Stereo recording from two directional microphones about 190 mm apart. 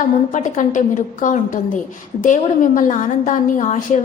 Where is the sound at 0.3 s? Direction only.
40° left (ahead or behind).